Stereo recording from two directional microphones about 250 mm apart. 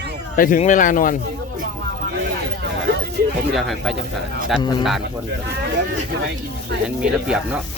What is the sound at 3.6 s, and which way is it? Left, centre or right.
Speech, centre.